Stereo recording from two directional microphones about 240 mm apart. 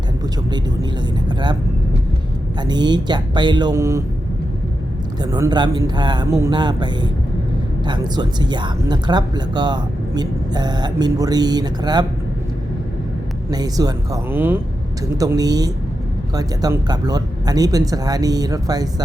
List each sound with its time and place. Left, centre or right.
2.6 s speech: centre
5.2 s speech: centre
13.5 s speech: centre